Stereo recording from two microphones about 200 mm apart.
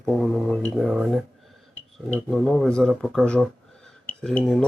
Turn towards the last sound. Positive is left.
turn(degrees=5)  # may be behind; listen again after turning